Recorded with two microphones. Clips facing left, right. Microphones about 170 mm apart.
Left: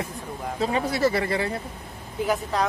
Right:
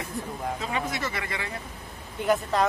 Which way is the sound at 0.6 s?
35° left (ahead or behind).